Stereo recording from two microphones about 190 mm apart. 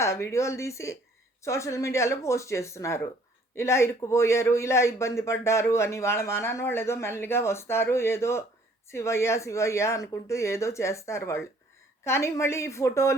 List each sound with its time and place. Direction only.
0.0 s a man's voice: 15° left (ahead or behind)